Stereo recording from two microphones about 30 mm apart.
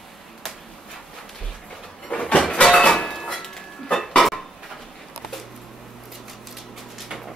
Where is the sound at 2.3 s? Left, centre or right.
Left.